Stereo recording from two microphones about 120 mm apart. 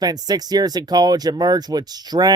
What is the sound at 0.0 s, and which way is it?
Speech, 35° right (ahead or behind).